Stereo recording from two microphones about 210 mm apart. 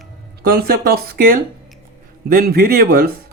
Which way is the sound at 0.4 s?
45° right (ahead or behind).